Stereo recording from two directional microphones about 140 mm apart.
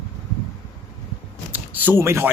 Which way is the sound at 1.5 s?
10° right (ahead or behind).